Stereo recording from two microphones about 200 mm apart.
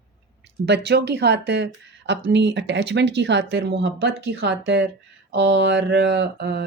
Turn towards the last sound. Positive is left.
turn(degrees=-55)  # may be behind; listen again after turning